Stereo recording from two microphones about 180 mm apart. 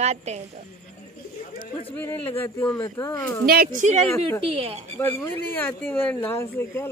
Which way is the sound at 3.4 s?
55° right (ahead or behind).